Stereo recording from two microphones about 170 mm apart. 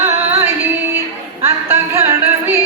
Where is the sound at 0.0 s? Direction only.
15° right (ahead or behind).